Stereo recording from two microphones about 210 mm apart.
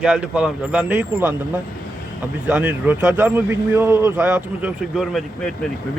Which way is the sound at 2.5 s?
10° right (ahead or behind).